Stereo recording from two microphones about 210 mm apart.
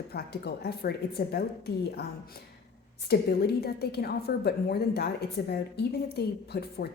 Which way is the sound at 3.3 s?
50° left (ahead or behind).